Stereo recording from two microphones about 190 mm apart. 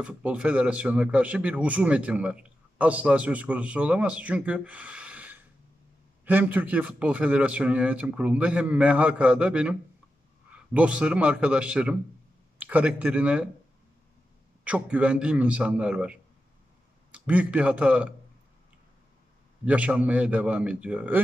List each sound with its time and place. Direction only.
0.0 s a man's voice: 5° right (ahead or behind)
14.6 s a man's voice: 5° right (ahead or behind)
19.6 s a man's voice: 5° right (ahead or behind)